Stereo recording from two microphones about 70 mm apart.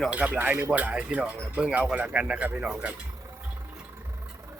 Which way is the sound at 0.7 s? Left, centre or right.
Centre.